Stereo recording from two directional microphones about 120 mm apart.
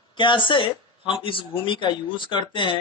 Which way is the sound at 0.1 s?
40° left (ahead or behind).